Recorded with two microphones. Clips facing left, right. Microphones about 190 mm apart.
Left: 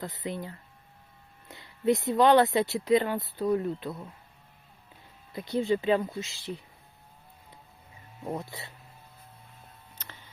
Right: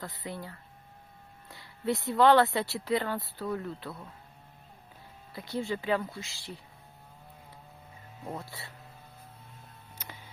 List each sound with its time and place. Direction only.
0.0 s speech: 20° left (ahead or behind)
5.3 s speech: 20° left (ahead or behind)
8.3 s speech: 20° left (ahead or behind)
10.0 s a sound: 10° right (ahead or behind)